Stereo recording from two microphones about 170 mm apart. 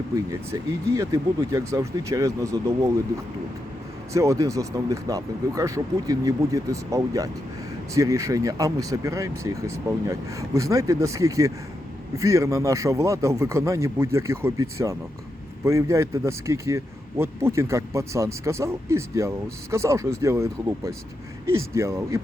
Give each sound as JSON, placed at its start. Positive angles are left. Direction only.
{"t": 0.3, "sound": "speech", "side_deg": -20}
{"t": 4.1, "sound": "speech", "side_deg": -15}